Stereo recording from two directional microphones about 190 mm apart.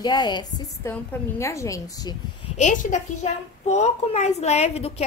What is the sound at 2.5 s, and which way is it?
A woman's voice, 40° left (ahead or behind).